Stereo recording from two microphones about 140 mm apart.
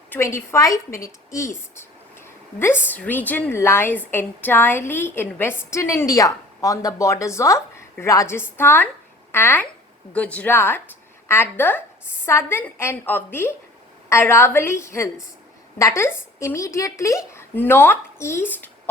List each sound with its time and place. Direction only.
0.1 s a woman's voice: 20° left (ahead or behind)